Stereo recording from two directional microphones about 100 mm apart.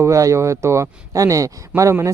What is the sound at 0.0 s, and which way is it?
Speech, 30° right (ahead or behind).